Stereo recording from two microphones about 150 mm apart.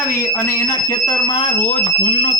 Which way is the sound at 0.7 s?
25° left (ahead or behind).